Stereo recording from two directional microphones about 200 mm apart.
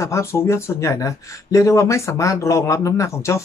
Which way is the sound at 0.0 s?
15° left (ahead or behind).